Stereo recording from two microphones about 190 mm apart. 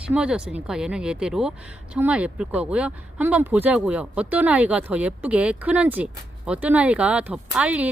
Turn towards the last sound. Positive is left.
turn(degrees=-5)  # may be behind; listen again after turning